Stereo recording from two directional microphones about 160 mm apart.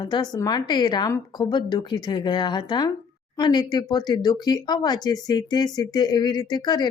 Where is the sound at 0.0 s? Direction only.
25° left (ahead or behind).